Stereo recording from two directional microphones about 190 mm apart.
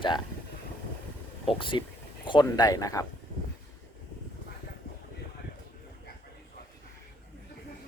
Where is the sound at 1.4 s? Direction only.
25° left (ahead or behind).